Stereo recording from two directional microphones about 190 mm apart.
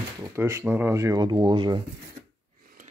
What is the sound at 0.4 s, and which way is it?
Speech, 15° right (ahead or behind).